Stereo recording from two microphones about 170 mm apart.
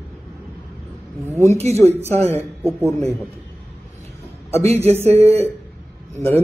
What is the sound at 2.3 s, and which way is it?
Speech, 15° right (ahead or behind).